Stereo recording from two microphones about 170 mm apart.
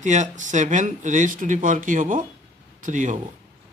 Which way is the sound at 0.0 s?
45° right (ahead or behind).